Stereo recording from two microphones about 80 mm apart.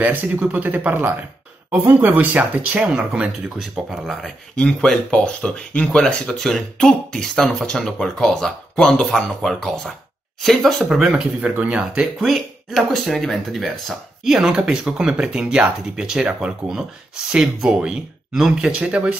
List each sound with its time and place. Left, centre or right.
0.0 s speech: right; by 11.2 s centre
11.4 s speech: centre
12.2 s speech: centre